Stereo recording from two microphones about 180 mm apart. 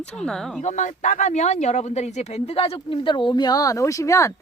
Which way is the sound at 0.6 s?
40° left (ahead or behind).